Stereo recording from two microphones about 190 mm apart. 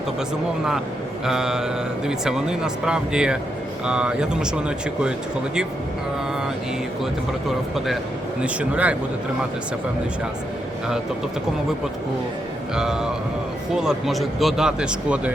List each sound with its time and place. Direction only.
1.2 s speech: centre (ahead or behind)
8.4 s a man's voice: 5° right (ahead or behind)
12.7 s speech: 5° right (ahead or behind)